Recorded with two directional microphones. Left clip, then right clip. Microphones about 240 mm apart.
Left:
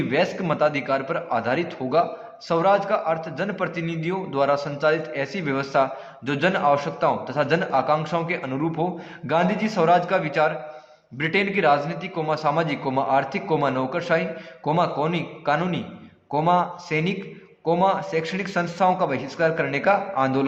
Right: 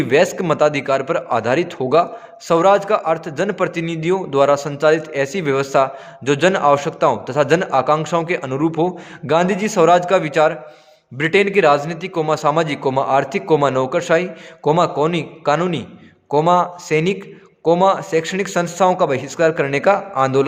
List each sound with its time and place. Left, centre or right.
0.1 s a man's voice: right